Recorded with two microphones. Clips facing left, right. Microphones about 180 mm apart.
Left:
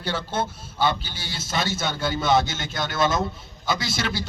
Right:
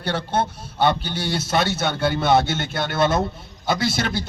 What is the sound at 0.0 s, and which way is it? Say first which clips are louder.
A man's voice: right 4 dB; 60° right (ahead or behind).